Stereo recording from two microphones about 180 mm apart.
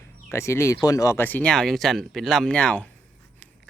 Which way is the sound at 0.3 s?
15° left (ahead or behind).